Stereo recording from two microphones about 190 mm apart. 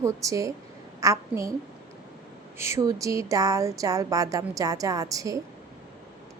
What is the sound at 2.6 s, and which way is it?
A woman's voice, 15° right (ahead or behind).